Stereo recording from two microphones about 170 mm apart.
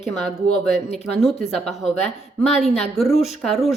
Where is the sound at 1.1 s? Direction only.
Centre (ahead or behind).